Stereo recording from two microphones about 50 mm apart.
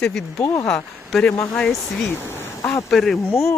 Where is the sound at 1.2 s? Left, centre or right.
Left.